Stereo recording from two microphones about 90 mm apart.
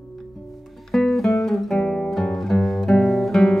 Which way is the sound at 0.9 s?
5° left (ahead or behind).